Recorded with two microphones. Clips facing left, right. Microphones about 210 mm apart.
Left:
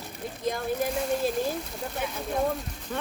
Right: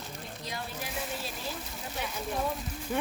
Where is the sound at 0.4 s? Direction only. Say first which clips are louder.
Left 13 dB; 50° left (ahead or behind).